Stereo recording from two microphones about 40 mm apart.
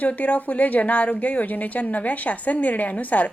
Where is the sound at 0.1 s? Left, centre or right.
Left.